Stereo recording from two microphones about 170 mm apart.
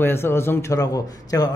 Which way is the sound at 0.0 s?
15° left (ahead or behind).